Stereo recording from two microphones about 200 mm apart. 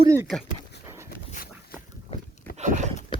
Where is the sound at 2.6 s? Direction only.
35° right (ahead or behind).